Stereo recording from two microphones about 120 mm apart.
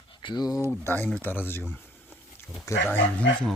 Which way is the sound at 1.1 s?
15° left (ahead or behind).